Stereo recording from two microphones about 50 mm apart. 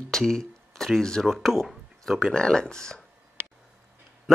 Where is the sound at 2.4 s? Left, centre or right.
Centre.